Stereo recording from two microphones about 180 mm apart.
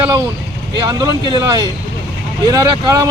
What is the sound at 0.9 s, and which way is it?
Speech, 25° right (ahead or behind).